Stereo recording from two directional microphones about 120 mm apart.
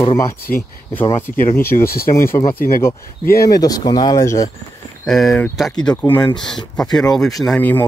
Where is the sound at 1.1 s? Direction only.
20° left (ahead or behind).